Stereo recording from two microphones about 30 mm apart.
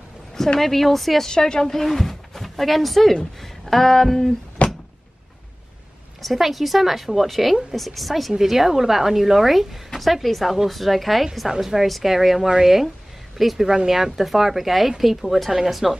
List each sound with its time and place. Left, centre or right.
0.6 s speech: centre
1.3 s a woman's voice: left
1.7 s speech: centre
3.3 s a sound: centre
4.6 s a sound: left
6.2 s a woman's voice: centre
8.3 s a woman's voice: centre
15.5 s a woman's voice: centre